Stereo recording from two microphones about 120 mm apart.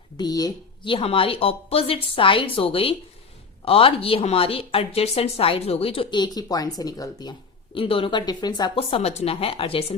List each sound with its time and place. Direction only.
0.2 s a woman's voice: 30° left (ahead or behind)
0.9 s a woman's voice: 45° left (ahead or behind)
8.7 s a woman's voice: 55° left (ahead or behind)